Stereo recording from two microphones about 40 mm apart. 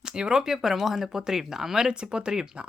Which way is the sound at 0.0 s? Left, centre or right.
Centre.